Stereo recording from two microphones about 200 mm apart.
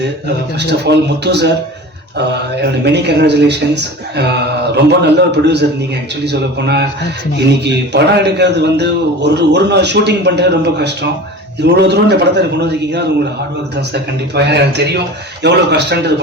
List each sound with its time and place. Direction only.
0.6 s a man's voice: 60° right (ahead or behind)